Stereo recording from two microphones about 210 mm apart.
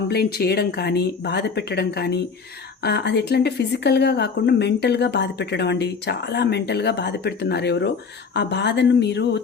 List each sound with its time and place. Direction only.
0.1 s a woman's voice: 50° left (ahead or behind)